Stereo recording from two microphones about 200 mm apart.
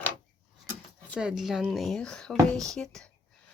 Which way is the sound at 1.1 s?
5° right (ahead or behind).